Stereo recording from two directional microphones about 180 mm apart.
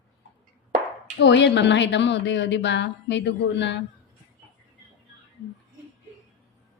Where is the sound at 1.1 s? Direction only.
80° left.